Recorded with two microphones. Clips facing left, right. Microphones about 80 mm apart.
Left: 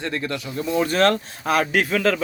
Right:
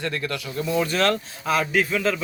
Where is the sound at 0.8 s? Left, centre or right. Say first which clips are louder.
Left 3 dB; left.